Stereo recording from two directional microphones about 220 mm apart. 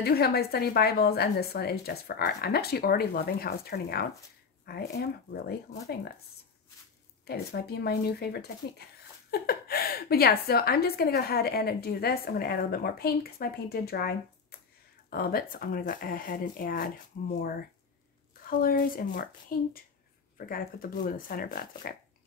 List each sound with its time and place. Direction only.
0.0 s a woman's voice: 45° left (ahead or behind)
7.2 s a woman's voice: 45° left (ahead or behind)
18.5 s speech: 40° left (ahead or behind)